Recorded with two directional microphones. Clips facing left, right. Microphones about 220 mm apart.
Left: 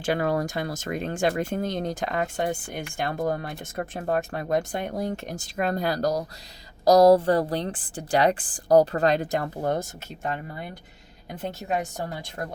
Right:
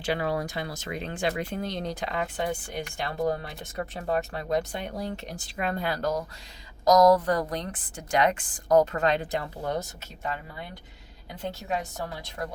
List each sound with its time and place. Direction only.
0.0 s a woman's voice: 45° left (ahead or behind)